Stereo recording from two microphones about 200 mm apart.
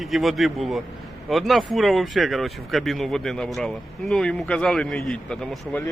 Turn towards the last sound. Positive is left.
turn(degrees=5)  # may be behind; listen again after turning